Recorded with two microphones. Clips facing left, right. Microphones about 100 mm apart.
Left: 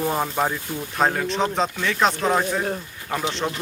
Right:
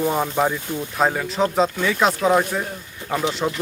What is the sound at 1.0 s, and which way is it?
Speech, centre (ahead or behind).